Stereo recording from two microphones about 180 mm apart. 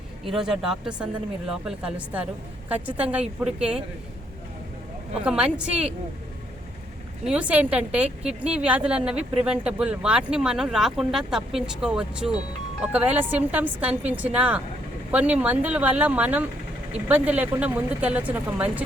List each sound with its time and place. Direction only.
0.3 s a woman's voice: 5° right (ahead or behind)
5.2 s speech: 5° right (ahead or behind)
7.3 s a woman's voice: 5° right (ahead or behind)